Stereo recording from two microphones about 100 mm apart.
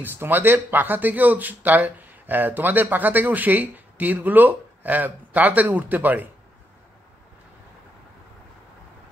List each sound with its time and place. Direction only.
0.0 s speech: 20° right (ahead or behind)